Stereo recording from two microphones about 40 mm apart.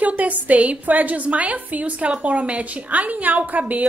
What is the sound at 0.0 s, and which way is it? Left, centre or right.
A woman's voice, right.